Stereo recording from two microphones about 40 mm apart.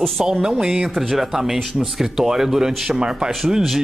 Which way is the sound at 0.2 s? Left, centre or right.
Centre.